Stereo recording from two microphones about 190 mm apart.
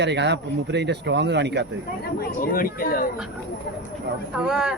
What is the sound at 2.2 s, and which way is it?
Speech, 50° left (ahead or behind).